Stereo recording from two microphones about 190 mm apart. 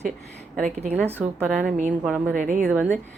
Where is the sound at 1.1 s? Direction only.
10° right (ahead or behind).